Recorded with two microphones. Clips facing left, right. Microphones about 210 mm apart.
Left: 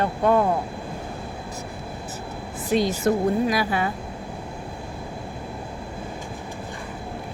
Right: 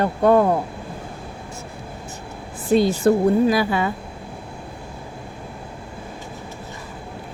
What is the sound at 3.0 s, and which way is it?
Speech, 30° right (ahead or behind).